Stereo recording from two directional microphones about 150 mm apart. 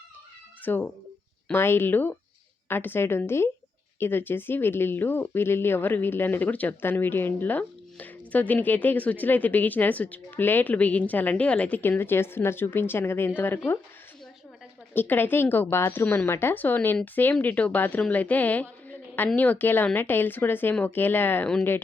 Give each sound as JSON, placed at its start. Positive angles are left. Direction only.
{"t": 0.6, "sound": "speech", "side_deg": 10}
{"t": 14.9, "sound": "speech", "side_deg": 15}